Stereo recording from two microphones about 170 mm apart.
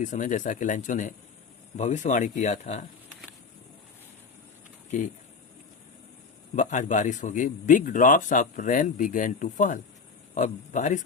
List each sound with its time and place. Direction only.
0.0 s a man's voice: 50° left (ahead or behind)
6.6 s a man's voice: 50° left (ahead or behind)